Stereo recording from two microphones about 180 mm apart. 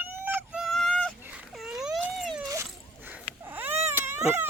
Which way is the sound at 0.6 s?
Centre (ahead or behind).